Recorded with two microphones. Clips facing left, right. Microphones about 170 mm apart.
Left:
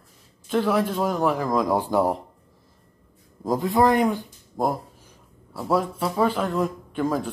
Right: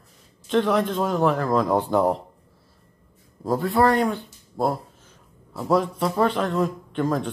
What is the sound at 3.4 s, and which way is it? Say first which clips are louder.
Speech: even; 15° left (ahead or behind).